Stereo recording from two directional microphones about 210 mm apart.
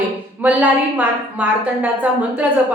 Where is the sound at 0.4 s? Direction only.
5° right (ahead or behind).